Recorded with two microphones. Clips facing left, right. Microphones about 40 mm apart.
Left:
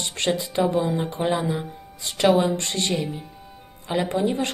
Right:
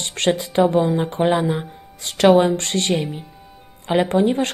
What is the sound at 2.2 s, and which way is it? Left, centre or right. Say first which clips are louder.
Speech: right 5 dB; right.